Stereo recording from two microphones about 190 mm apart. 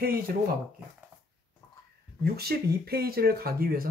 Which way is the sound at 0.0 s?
50° right (ahead or behind).